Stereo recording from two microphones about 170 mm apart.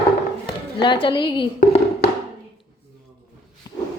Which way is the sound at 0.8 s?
30° left (ahead or behind).